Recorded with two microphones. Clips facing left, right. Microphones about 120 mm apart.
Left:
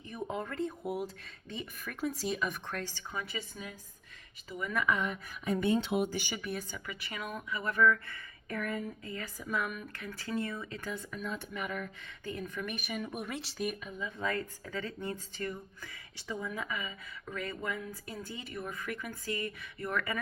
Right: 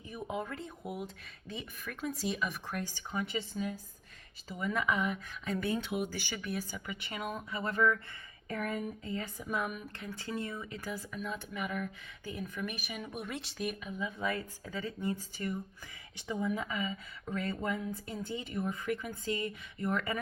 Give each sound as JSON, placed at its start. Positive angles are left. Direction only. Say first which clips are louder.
{"t": 0.1, "sound": "speech", "louder": "left 1 dB", "side_deg": -5}
{"t": 2.7, "sound": "speech", "louder": "right 2 dB", "side_deg": -15}
{"t": 5.5, "sound": "speech", "louder": "left 4 dB", "side_deg": 20}
{"t": 6.4, "sound": "speech", "louder": "even", "side_deg": 0}
{"t": 6.7, "sound": "speech", "louder": "right 1 dB", "side_deg": -15}
{"t": 7.0, "sound": "speech", "louder": "right 2 dB", "side_deg": -30}
{"t": 14.0, "sound": "speech", "louder": "even", "side_deg": -15}